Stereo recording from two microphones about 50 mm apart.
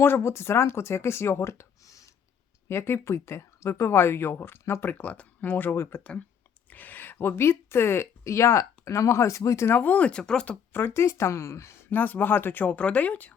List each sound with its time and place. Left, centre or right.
0.2 s speech: left
2.6 s speech: left
4.9 s speech: left
5.7 s speech: left
6.0 s speech: left
6.7 s a woman's voice: left
8.2 s speech: left
9.8 s speech: left
10.7 s speech: left
11.9 s speech: left
12.7 s speech: left